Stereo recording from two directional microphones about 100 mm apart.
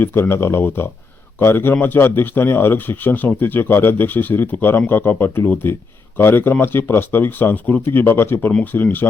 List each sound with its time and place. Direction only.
0.0 s speech: 25° left (ahead or behind)